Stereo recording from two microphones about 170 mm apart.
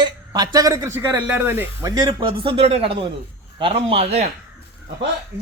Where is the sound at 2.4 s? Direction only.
35° right (ahead or behind).